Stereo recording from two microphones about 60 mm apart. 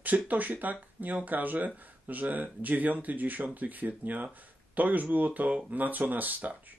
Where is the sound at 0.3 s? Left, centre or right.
Right.